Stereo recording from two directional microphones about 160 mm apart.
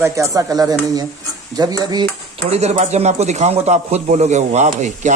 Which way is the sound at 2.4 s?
40° right (ahead or behind).